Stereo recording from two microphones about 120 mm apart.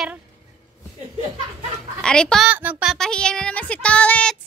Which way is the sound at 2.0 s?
5° left (ahead or behind).